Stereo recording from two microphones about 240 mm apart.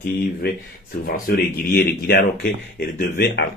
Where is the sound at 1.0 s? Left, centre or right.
Left.